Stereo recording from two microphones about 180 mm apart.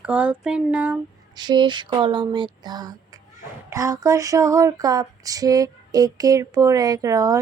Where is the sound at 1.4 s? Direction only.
25° right (ahead or behind).